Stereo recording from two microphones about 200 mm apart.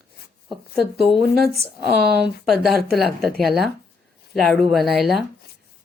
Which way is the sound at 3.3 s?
Centre (ahead or behind).